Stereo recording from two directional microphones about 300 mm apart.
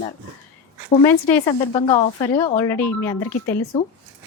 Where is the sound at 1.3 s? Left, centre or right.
Centre.